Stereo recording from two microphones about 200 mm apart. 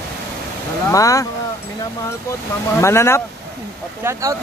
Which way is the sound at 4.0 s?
15° right (ahead or behind).